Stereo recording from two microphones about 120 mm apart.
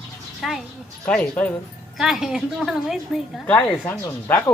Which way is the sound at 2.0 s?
5° right (ahead or behind).